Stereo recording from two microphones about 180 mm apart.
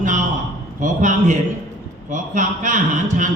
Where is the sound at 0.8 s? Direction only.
45° right (ahead or behind).